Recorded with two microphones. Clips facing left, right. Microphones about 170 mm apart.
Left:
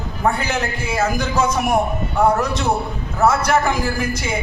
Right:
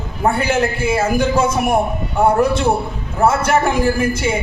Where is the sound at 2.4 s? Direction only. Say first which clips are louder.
Right 5 dB; 10° right (ahead or behind).